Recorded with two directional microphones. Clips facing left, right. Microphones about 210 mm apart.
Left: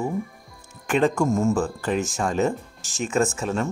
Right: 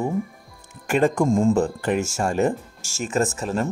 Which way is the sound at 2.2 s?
10° right (ahead or behind).